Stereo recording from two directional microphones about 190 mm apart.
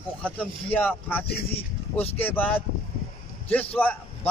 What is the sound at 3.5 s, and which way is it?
Speech, 10° left (ahead or behind).